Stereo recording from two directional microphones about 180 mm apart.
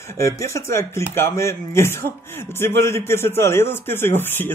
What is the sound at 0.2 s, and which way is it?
Speech, 15° left (ahead or behind).